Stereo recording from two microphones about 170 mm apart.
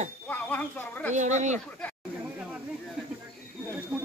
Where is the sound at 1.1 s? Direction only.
45° right (ahead or behind).